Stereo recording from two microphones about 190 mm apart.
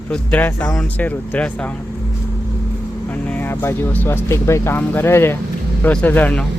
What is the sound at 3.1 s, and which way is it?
Speech, 10° left (ahead or behind).